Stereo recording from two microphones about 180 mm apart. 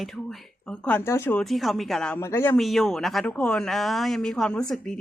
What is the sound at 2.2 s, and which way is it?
Speech, 15° left (ahead or behind).